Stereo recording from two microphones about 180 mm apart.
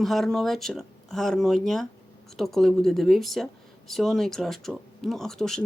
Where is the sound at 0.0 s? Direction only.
Centre (ahead or behind).